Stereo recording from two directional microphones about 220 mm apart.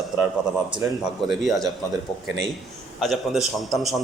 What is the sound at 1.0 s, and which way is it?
Speech, centre (ahead or behind).